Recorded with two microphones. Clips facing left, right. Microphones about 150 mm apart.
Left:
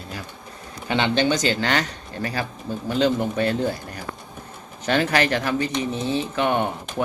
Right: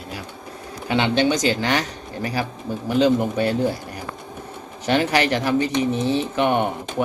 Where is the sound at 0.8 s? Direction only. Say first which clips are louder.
Right 2 dB; 10° right (ahead or behind).